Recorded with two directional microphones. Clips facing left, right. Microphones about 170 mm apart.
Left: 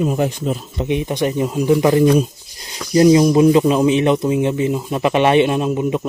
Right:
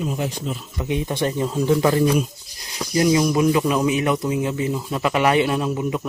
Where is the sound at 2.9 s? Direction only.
30° left (ahead or behind).